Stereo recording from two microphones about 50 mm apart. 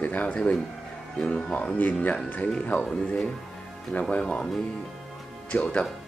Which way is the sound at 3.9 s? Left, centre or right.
Left.